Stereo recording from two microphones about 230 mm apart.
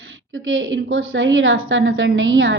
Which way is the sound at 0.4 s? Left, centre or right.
Right.